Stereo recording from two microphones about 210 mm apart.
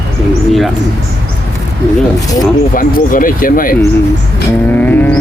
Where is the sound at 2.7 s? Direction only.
40° left (ahead or behind).